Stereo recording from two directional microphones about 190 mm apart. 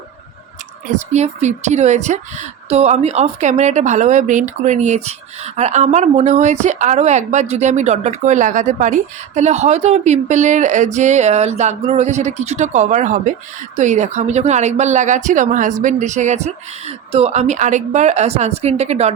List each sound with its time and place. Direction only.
0.9 s speech: 35° right (ahead or behind)